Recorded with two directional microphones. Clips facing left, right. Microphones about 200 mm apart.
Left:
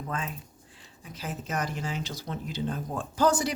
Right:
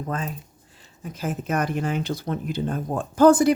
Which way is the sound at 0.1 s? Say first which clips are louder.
Right 4 dB; 40° right (ahead or behind).